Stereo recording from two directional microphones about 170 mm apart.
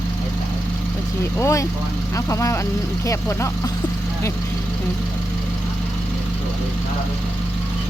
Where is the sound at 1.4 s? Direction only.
20° left (ahead or behind).